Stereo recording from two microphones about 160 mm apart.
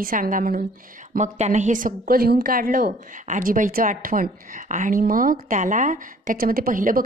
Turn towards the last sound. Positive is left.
turn(degrees=-60)  # may be behind; listen again after turning